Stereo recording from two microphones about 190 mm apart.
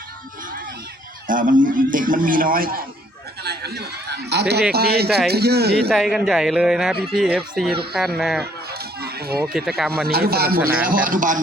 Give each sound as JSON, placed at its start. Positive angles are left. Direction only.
{"t": 1.3, "sound": "a man's voice", "side_deg": -45}
{"t": 5.9, "sound": "speech", "side_deg": 0}
{"t": 8.8, "sound": "a sound", "side_deg": -55}
{"t": 9.4, "sound": "speech", "side_deg": 0}
{"t": 10.1, "sound": "a man's voice", "side_deg": -55}